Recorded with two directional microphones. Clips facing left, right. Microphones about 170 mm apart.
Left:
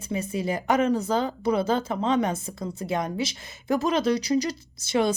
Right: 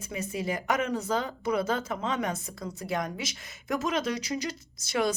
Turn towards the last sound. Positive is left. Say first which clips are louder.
# left 5 dB
turn(degrees=35)  # may be behind; listen again after turning